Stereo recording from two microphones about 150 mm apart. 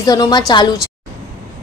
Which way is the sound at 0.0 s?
25° left (ahead or behind).